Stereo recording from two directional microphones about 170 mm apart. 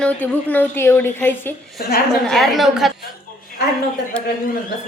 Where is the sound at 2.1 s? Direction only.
Centre (ahead or behind).